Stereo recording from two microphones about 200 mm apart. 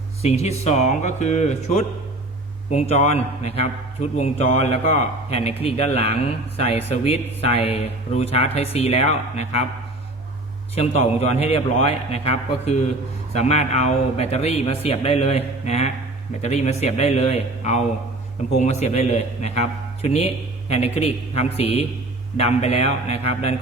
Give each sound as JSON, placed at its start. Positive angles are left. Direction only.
{"t": 0.2, "sound": "a man's voice", "side_deg": 30}
{"t": 10.8, "sound": "a man's voice", "side_deg": 30}